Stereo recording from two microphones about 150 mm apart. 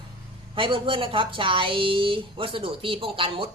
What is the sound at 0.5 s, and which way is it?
Speech, 35° right (ahead or behind).